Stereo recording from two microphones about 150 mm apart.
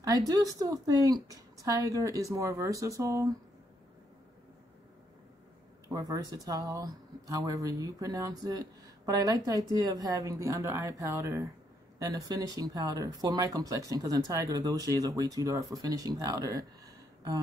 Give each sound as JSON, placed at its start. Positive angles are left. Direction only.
{"t": 0.3, "sound": "speech", "side_deg": -25}
{"t": 5.9, "sound": "speech", "side_deg": -25}